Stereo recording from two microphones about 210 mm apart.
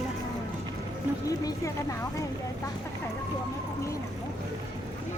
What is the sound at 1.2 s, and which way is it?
Speech, 15° left (ahead or behind).